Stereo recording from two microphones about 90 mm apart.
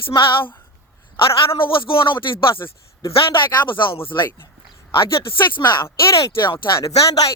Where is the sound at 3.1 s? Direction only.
70° left (ahead or behind).